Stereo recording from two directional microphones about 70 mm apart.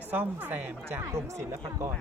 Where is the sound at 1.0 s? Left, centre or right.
Right.